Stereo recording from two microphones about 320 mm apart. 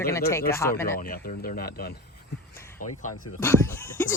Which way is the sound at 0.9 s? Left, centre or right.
Left.